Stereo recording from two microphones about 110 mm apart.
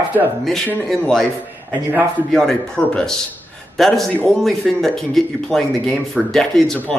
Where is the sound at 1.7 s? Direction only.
15° right (ahead or behind).